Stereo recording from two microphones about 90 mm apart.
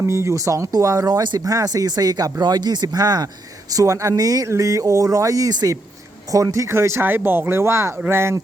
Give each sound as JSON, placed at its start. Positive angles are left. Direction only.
{"t": 0.0, "sound": "speech", "side_deg": -35}